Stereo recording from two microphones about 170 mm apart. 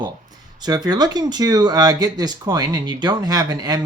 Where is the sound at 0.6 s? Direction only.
25° right (ahead or behind).